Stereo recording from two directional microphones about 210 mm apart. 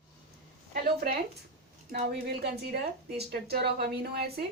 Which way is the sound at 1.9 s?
45° right (ahead or behind).